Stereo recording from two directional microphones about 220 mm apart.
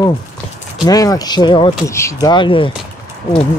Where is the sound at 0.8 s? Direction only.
15° left (ahead or behind).